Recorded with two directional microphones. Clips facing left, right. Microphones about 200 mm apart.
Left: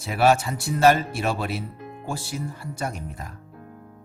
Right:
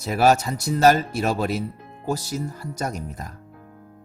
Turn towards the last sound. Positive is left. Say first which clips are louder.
# right 3 dB
turn(degrees=-40)  # may be behind; listen again after turning